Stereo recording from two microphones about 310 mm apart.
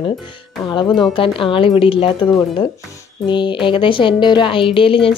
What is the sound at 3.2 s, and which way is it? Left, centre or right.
Speech, centre.